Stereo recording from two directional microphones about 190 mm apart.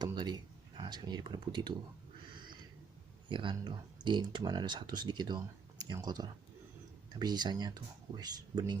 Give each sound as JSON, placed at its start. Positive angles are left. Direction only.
{"t": 0.0, "sound": "speech", "side_deg": -20}
{"t": 3.2, "sound": "speech", "side_deg": -25}